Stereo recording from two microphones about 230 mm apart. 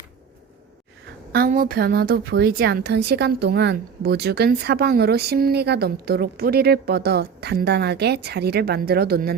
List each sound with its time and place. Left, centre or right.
1.3 s a woman's voice: right